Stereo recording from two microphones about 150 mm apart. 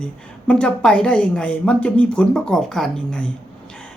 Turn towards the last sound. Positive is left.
turn(degrees=5)  # may be behind; listen again after turning